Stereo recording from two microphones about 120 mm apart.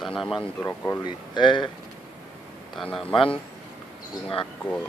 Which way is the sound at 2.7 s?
Centre (ahead or behind).